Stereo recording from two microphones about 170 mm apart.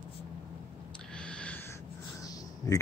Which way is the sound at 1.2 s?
5° left (ahead or behind).